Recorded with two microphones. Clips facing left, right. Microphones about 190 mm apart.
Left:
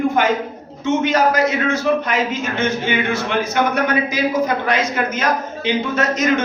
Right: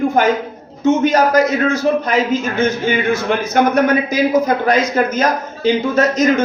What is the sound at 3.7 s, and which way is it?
A man's voice, 45° right (ahead or behind).